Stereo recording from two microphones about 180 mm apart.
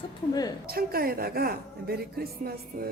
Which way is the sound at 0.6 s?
55° right (ahead or behind).